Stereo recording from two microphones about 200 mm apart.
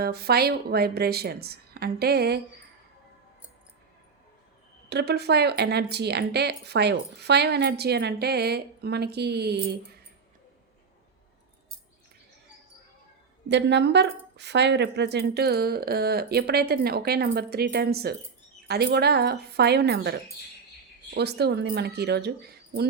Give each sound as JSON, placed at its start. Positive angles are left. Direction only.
{"t": 0.0, "sound": "a woman's voice", "side_deg": -50}
{"t": 4.9, "sound": "speech", "side_deg": -55}
{"t": 13.5, "sound": "a woman's voice", "side_deg": -60}